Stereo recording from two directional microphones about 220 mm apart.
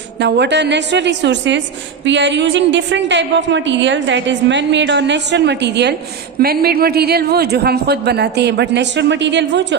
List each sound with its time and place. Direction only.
0.2 s a man's voice: 50° right (ahead or behind)